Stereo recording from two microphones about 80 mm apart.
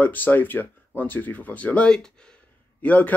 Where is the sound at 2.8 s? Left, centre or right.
Left.